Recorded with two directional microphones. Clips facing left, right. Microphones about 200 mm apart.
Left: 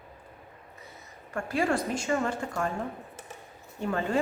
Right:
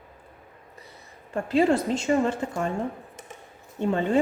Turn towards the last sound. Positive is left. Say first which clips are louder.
# right 5 dB
turn(degrees=-25)  # may be behind; listen again after turning